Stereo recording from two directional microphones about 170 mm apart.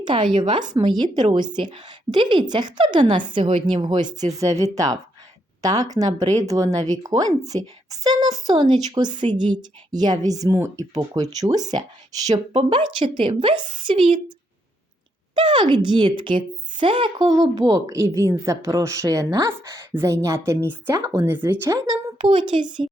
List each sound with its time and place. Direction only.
0.0 s a woman's voice: 25° right (ahead or behind)
15.4 s speech: 30° right (ahead or behind)